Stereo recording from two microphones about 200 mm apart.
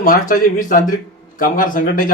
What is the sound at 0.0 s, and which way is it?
A man's voice, 45° left (ahead or behind).